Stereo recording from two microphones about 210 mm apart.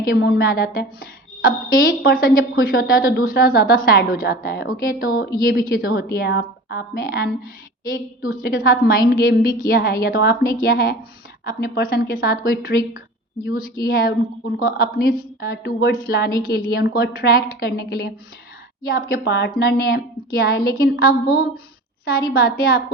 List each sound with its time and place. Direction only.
0.0 s a woman's voice: 45° left (ahead or behind)